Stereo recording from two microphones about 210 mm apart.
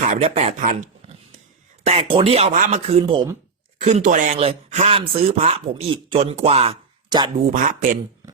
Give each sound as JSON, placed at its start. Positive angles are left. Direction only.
{"t": 0.0, "sound": "speech", "side_deg": -30}
{"t": 7.5, "sound": "speech", "side_deg": -40}